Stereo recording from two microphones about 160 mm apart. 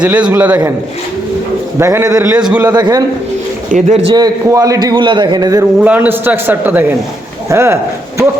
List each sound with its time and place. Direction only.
0.0 s a man's voice: 5° right (ahead or behind)
1.8 s a man's voice: 20° right (ahead or behind)
2.3 s a man's voice: 10° right (ahead or behind)
2.7 s a man's voice: 25° right (ahead or behind)
3.7 s speech: 50° right (ahead or behind)
4.1 s a man's voice: 20° right (ahead or behind)
5.8 s a man's voice: 10° right (ahead or behind)